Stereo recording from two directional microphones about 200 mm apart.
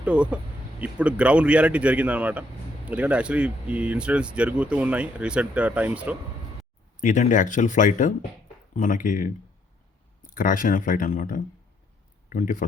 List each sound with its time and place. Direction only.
0.0 s speech: 5° right (ahead or behind)
7.0 s speech: 40° left (ahead or behind)
10.3 s speech: 40° left (ahead or behind)